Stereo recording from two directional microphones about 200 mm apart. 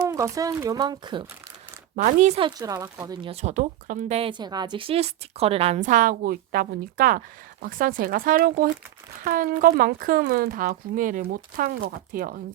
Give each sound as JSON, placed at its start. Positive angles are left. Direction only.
{"t": 0.1, "sound": "speech", "side_deg": -15}
{"t": 2.0, "sound": "a woman's voice", "side_deg": -35}
{"t": 2.6, "sound": "speech", "side_deg": -20}
{"t": 3.2, "sound": "a woman's voice", "side_deg": -35}